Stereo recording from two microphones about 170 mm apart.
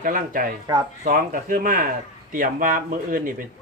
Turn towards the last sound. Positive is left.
turn(degrees=-55)  # may be behind; listen again after turning